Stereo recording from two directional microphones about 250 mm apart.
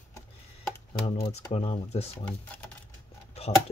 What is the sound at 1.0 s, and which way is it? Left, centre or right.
Speech, left.